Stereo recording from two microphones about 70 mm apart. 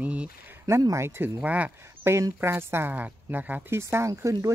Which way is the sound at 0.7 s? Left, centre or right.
Right.